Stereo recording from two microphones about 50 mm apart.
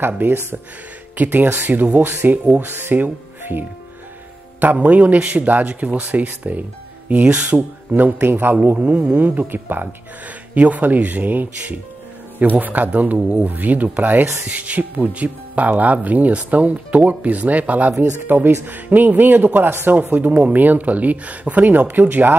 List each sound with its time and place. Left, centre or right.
0.2 s speech: right
2.6 s speech: right
7.5 s speech: right
8.7 s speech: right
18.2 s speech: right